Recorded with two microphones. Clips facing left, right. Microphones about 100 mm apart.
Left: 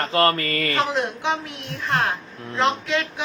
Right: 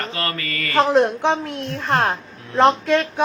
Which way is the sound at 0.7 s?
55° right (ahead or behind).